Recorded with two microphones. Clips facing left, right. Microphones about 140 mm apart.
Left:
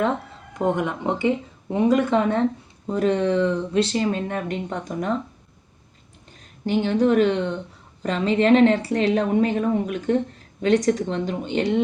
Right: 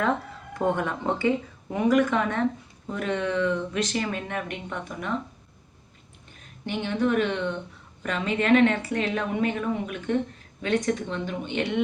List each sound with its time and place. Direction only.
0.6 s speech: 15° left (ahead or behind)
1.7 s speech: 25° left (ahead or behind)
6.7 s speech: 35° left (ahead or behind)